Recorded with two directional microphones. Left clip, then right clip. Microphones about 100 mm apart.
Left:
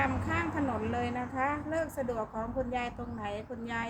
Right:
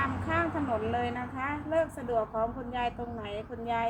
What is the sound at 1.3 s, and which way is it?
Speech, 55° left (ahead or behind).